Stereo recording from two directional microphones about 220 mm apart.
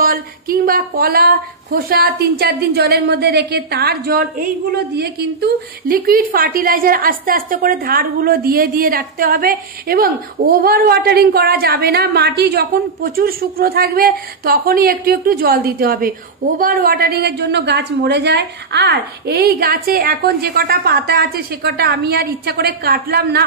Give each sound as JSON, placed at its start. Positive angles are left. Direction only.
{"t": 0.0, "sound": "speech", "side_deg": -40}